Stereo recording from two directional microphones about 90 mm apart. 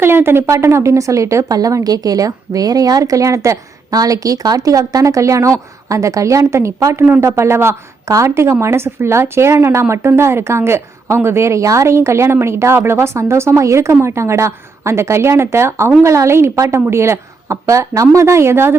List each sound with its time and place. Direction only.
0.0 s speech: 25° right (ahead or behind)